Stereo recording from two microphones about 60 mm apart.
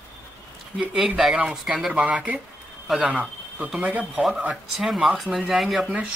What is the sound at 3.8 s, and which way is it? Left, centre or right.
Speech, centre.